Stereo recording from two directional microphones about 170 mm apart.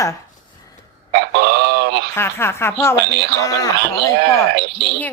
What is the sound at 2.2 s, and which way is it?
Speech, 15° left (ahead or behind).